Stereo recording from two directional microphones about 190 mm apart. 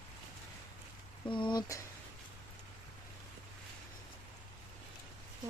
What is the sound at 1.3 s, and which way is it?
Speech, 25° left (ahead or behind).